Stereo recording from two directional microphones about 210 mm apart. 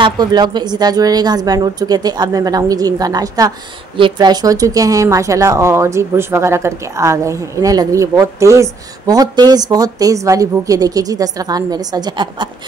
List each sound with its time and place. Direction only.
0.0 s speech: 20° right (ahead or behind)